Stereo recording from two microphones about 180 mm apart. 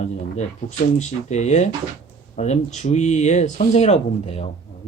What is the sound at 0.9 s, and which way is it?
Speech, 40° left (ahead or behind).